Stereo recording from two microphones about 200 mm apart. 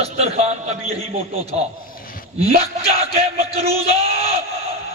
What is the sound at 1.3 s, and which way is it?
Music, 30° right (ahead or behind).